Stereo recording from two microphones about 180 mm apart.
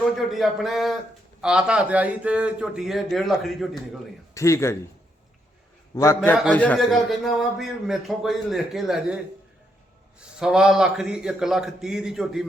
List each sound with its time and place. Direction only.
0.2 s a man's voice: centre (ahead or behind)
4.4 s a man's voice: 15° left (ahead or behind)
5.9 s a man's voice: 15° left (ahead or behind); by 12.5 s 5° right (ahead or behind)